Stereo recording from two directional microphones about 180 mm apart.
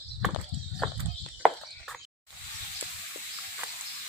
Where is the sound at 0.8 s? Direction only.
5° left (ahead or behind).